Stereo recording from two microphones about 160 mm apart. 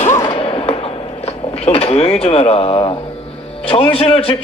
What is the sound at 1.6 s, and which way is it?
A man's voice, 40° left (ahead or behind).